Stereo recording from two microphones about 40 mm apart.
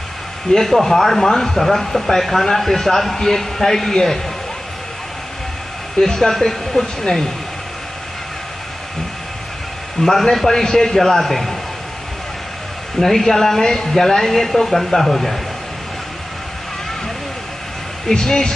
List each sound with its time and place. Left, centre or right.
0.5 s a man's voice: centre
5.9 s a man's voice: centre
10.0 s a man's voice: left
10.3 s a man's voice: centre
13.0 s a man's voice: centre
18.0 s a man's voice: centre